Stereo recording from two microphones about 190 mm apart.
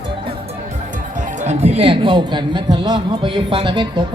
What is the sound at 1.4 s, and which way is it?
A man's voice, 35° right (ahead or behind).